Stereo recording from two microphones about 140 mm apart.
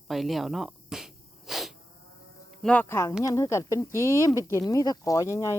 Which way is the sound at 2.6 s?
5° left (ahead or behind).